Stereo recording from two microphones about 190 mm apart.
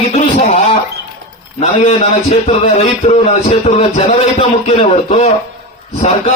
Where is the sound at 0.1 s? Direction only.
35° left (ahead or behind).